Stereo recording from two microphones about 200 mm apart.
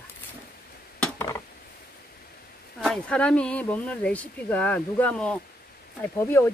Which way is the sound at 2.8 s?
5° left (ahead or behind).